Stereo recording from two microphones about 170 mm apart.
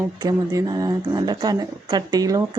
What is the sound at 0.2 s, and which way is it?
Speech, 20° right (ahead or behind).